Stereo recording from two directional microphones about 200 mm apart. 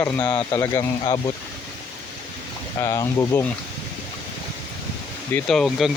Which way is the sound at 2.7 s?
15° left (ahead or behind).